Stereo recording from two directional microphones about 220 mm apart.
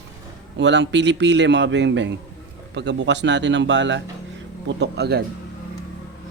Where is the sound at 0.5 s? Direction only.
55° right (ahead or behind).